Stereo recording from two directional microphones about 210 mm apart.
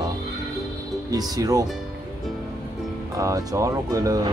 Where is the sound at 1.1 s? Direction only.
15° right (ahead or behind).